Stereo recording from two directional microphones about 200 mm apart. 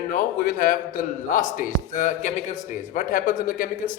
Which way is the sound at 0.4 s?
45° left (ahead or behind).